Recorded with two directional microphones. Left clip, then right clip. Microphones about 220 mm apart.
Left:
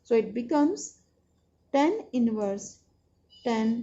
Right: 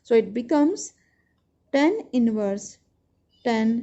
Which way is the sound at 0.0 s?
50° right (ahead or behind).